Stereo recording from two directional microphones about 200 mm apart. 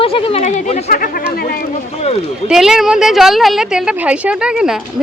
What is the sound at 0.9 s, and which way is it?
Speech, 45° left (ahead or behind).